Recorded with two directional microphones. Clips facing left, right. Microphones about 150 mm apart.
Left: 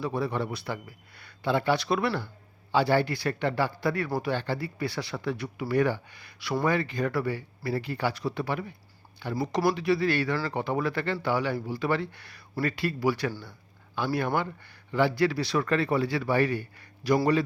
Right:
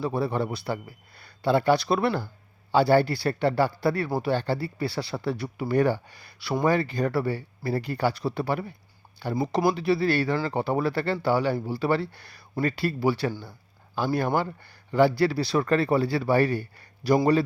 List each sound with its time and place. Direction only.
0.0 s speech: 35° right (ahead or behind)
9.3 s speech: 25° right (ahead or behind)